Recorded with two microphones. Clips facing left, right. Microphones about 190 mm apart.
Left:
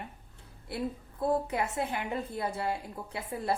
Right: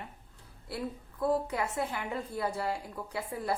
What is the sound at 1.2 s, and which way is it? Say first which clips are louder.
A woman's voice: even; 25° left (ahead or behind).